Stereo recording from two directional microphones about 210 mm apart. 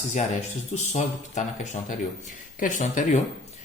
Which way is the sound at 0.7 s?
35° left (ahead or behind).